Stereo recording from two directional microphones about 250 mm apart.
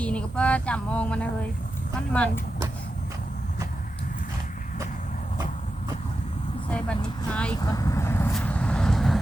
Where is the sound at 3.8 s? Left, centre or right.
Left.